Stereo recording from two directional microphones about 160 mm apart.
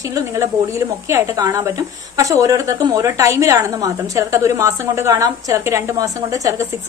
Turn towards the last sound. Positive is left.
turn(degrees=-20)  # may be behind; listen again after turning